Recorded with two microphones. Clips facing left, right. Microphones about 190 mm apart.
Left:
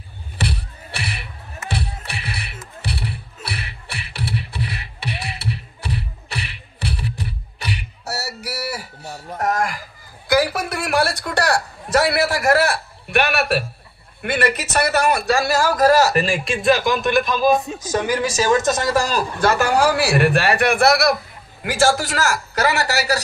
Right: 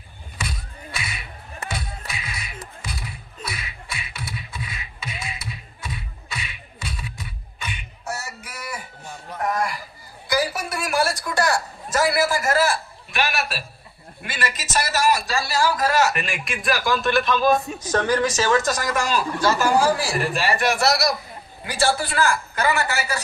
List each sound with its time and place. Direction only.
0.4 s music: 70° left (ahead or behind)
3.4 s beatboxing: 65° left (ahead or behind)
8.0 s a sound: 40° left (ahead or behind)
10.2 s a sound: 60° left (ahead or behind)
14.2 s a man's voice: 65° left (ahead or behind); by 19.2 s 35° left (ahead or behind)
19.4 s a man's voice: 65° left (ahead or behind)
21.9 s a man's voice: 90° left